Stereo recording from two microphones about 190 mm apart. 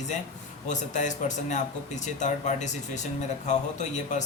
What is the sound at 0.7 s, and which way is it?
Speech, 40° left (ahead or behind).